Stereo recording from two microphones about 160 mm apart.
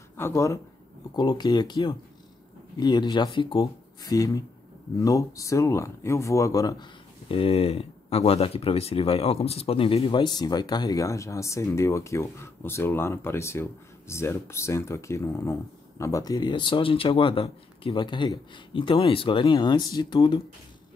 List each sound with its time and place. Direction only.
0.2 s speech: 15° left (ahead or behind)
7.2 s speech: 35° left (ahead or behind)